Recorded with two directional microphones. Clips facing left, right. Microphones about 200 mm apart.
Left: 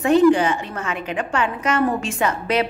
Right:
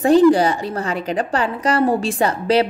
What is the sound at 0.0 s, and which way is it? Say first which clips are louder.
A woman's voice: right 2 dB; 35° right (ahead or behind).